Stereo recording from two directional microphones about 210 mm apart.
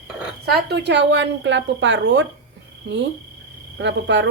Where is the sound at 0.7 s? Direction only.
55° right (ahead or behind).